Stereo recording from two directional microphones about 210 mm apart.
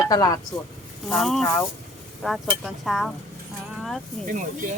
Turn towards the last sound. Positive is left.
turn(degrees=0)  # may be behind; listen again after turning